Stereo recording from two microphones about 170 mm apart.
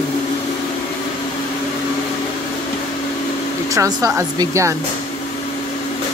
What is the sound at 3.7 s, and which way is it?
Speech, 20° right (ahead or behind).